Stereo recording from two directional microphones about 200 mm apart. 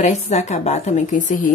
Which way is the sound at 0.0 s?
35° left (ahead or behind).